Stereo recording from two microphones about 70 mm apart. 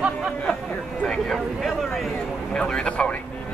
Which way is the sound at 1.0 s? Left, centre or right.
Centre.